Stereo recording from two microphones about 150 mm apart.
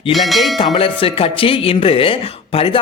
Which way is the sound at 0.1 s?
Centre (ahead or behind).